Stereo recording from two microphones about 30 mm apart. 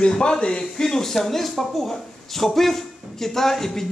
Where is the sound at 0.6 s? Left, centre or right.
Centre.